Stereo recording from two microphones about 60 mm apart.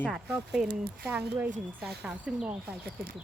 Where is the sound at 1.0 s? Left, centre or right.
Right.